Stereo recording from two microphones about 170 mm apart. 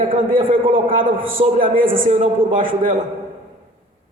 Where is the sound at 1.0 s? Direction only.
55° right (ahead or behind).